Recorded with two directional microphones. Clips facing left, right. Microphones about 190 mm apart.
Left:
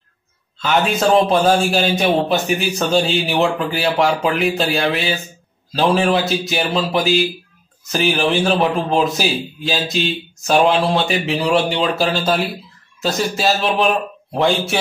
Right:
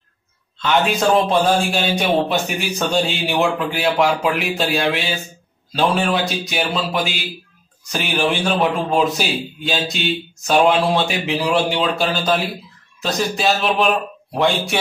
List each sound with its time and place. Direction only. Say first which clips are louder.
0.6 s speech: even; centre (ahead or behind)